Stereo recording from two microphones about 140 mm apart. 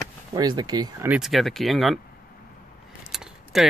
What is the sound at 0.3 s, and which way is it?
Speech, 30° right (ahead or behind).